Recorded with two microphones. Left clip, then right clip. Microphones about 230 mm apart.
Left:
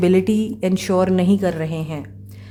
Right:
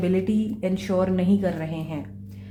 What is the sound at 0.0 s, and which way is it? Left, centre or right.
Speech, left.